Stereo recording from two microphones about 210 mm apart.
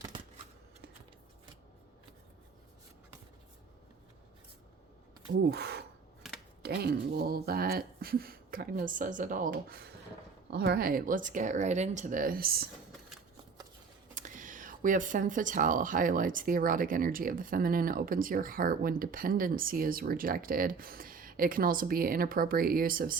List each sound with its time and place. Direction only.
5.5 s speech: 50° right (ahead or behind)
14.2 s speech: 40° right (ahead or behind)